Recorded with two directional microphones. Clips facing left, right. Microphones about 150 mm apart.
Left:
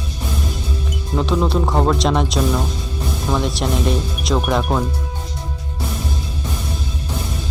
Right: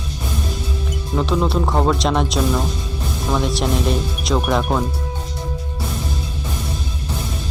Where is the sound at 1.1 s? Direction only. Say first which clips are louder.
Left 1 dB; centre (ahead or behind).